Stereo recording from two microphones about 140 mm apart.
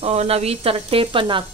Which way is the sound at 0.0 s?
45° right (ahead or behind).